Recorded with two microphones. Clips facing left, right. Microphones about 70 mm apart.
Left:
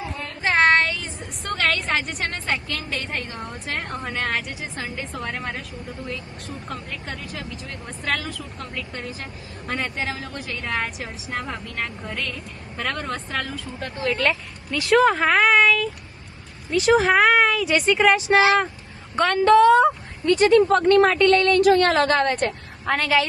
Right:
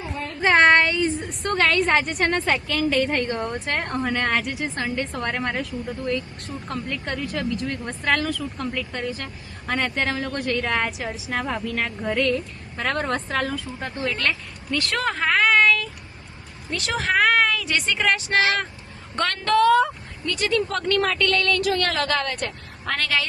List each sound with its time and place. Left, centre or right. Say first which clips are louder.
1.2 s speech: right 3 dB; centre
13.7 s speech: even; right
14.1 s speech: left 7 dB; centre
15.1 s a sound: left 2 dB; centre
16.7 s a woman's voice: left 6 dB; centre; by 22.5 s left
22.9 s speech: left 4 dB; centre